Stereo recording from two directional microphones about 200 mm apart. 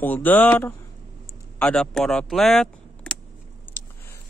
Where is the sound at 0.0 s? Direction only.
10° left (ahead or behind).